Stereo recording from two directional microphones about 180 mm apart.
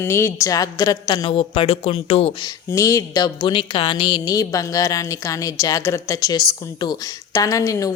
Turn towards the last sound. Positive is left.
turn(degrees=20)  # may be behind; listen again after turning